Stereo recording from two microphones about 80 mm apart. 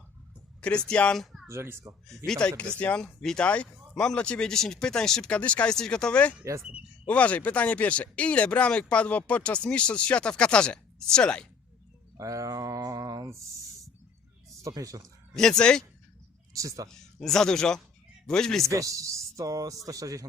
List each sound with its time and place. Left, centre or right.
0.6 s speech: centre
1.2 s a sound: centre
1.5 s speech: right
2.0 s speech: centre
12.1 s a sound: right
14.6 s speech: right
15.4 s speech: centre
16.5 s speech: right
17.2 s speech: centre
18.7 s speech: right